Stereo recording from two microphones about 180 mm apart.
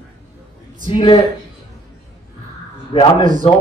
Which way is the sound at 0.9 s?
25° left (ahead or behind).